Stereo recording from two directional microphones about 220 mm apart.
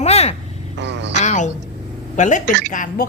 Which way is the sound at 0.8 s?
55° right (ahead or behind).